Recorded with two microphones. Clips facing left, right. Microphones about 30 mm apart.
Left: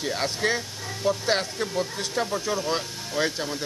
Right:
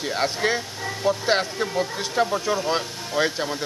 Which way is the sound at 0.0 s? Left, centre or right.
Centre.